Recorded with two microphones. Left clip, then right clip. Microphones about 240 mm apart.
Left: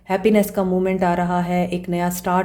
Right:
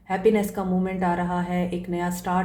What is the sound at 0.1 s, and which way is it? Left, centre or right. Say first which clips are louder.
Speech: left 4 dB; left.